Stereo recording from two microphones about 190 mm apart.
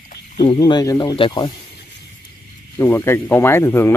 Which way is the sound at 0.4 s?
20° left (ahead or behind).